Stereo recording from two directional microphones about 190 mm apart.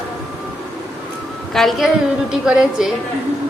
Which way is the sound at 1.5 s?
Centre (ahead or behind).